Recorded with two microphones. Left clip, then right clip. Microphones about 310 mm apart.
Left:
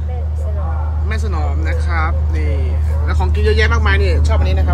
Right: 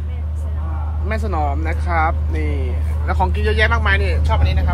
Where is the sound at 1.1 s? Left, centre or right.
Centre.